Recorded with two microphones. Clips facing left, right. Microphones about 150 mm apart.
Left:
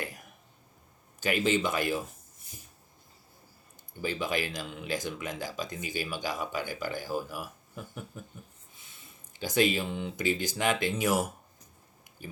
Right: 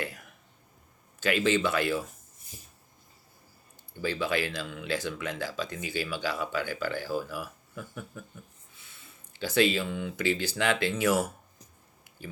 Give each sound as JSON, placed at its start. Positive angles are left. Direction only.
{"t": 1.2, "sound": "speech", "side_deg": 15}
{"t": 4.0, "sound": "speech", "side_deg": 15}
{"t": 8.7, "sound": "a sound", "side_deg": 20}
{"t": 10.0, "sound": "speech", "side_deg": 20}